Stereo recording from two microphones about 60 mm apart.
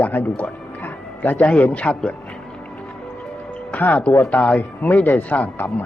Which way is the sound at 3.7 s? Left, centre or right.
Left.